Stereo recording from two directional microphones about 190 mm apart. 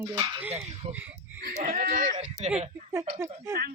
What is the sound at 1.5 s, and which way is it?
Speech, 45° right (ahead or behind).